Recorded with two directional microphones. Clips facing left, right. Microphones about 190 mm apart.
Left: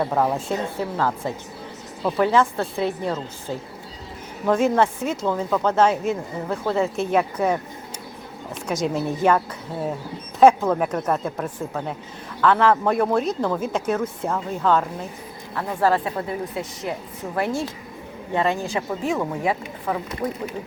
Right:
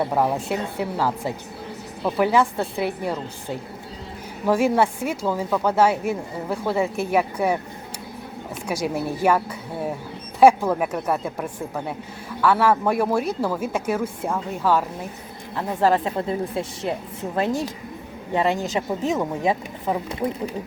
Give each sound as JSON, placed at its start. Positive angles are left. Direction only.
{"t": 0.0, "sound": "speech", "side_deg": -5}
{"t": 4.4, "sound": "speech", "side_deg": -10}
{"t": 8.6, "sound": "speech", "side_deg": -10}
{"t": 10.4, "sound": "speech", "side_deg": -10}
{"t": 15.8, "sound": "speech", "side_deg": -20}